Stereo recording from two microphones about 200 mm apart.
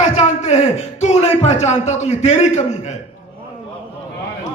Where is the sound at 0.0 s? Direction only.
35° left (ahead or behind).